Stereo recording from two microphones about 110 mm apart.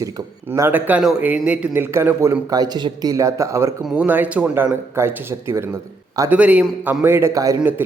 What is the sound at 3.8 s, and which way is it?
A man's voice, 10° right (ahead or behind).